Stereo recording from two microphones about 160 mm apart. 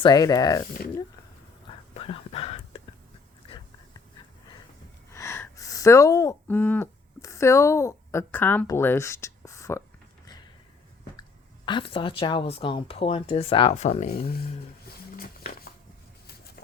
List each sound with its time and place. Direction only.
0.0 s speech: 25° left (ahead or behind)
1.9 s a sound: 35° left (ahead or behind)
5.1 s gasp: 15° left (ahead or behind)
6.6 s speech: 10° left (ahead or behind)
11.2 s speech: 30° left (ahead or behind); by 14.1 s 45° left (ahead or behind)
15.1 s a sound: 65° left (ahead or behind)